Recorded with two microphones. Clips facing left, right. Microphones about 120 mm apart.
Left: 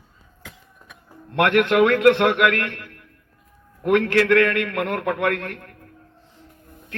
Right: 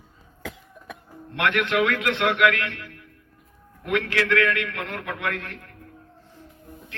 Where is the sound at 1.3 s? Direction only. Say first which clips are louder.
Left 6 dB; 50° left (ahead or behind).